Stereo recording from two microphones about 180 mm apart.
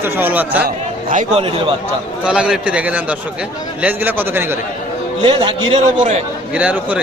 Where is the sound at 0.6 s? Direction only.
50° right (ahead or behind).